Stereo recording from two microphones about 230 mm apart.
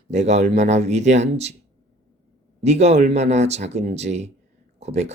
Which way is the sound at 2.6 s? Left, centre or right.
Right.